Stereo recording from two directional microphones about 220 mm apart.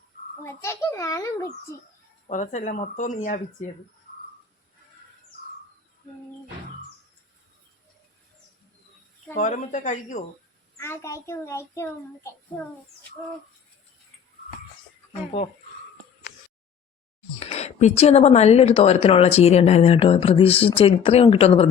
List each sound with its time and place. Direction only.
0.4 s a child's voice: 10° left (ahead or behind)
2.3 s speech: 35° left (ahead or behind)
9.3 s speech: 35° left (ahead or behind)
10.8 s a child's voice: 10° left (ahead or behind)
17.4 s a woman's voice: 30° left (ahead or behind)